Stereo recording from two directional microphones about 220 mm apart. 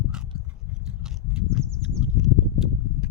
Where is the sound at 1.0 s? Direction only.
5° right (ahead or behind).